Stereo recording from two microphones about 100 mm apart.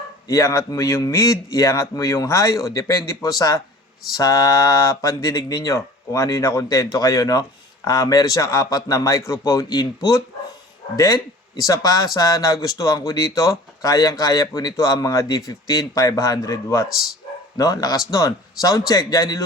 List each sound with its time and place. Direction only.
0.3 s speech: 35° left (ahead or behind)